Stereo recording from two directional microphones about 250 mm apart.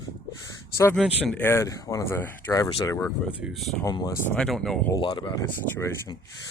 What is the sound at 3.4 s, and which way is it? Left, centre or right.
Speech, centre.